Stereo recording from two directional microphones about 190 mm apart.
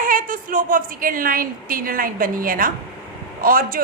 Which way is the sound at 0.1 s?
45° right (ahead or behind).